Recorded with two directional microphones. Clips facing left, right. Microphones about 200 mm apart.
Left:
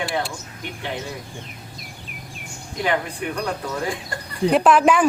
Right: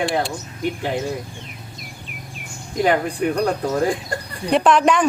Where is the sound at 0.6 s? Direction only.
40° right (ahead or behind).